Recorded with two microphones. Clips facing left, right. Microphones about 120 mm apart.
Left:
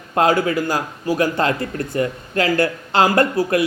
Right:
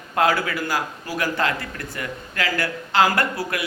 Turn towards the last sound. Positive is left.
turn(degrees=25)  # may be behind; listen again after turning